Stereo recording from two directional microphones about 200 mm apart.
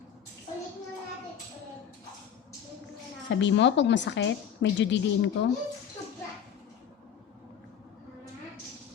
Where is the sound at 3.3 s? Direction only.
65° left (ahead or behind).